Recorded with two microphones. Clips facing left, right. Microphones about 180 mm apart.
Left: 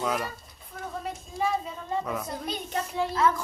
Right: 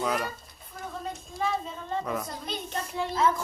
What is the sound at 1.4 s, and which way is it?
A child's voice, 10° left (ahead or behind).